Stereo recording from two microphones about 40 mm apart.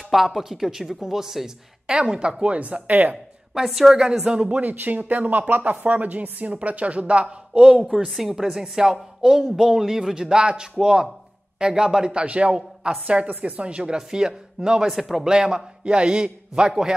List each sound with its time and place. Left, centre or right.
0.1 s speech: centre
2.0 s a man's voice: right
3.5 s speech: centre
4.2 s a man's voice: right
4.6 s speech: right
7.6 s a man's voice: centre
13.0 s a man's voice: right
14.9 s speech: centre
15.2 s a man's voice: centre